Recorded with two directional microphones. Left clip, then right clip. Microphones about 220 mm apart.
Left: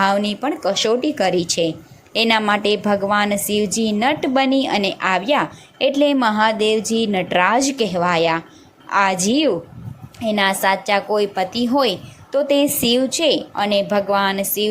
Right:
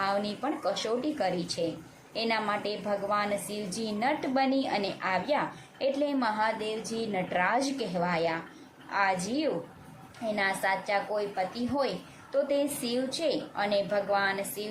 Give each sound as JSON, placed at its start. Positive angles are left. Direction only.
{"t": 0.0, "sound": "a woman's voice", "side_deg": 30}